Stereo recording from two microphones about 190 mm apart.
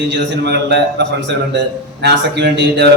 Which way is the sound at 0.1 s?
60° right (ahead or behind).